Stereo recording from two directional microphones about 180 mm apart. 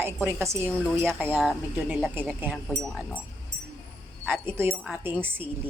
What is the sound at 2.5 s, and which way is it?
Speech, centre (ahead or behind).